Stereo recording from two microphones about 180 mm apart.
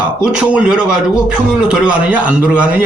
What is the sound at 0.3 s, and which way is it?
A man's voice, 5° right (ahead or behind).